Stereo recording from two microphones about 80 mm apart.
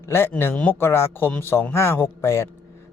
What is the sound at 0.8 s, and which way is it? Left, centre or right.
Speech, left.